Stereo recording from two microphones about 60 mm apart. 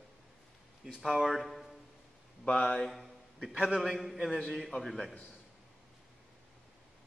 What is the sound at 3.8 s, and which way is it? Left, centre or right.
Speech, centre.